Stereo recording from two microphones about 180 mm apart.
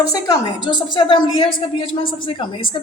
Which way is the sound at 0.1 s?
20° left (ahead or behind).